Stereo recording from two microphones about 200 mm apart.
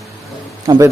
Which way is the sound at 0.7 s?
20° right (ahead or behind).